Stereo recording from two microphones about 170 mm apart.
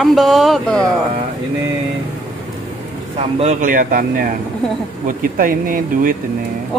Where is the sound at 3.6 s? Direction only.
55° right (ahead or behind).